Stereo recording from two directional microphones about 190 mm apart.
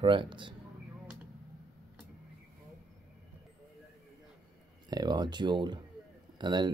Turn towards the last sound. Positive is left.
turn(degrees=-25)  # may be behind; listen again after turning